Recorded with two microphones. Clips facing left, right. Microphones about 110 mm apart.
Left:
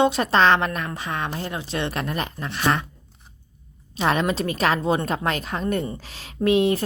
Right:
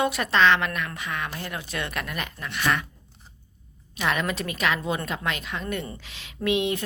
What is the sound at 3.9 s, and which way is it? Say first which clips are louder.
A woman's voice: left 5 dB; 30° left (ahead or behind).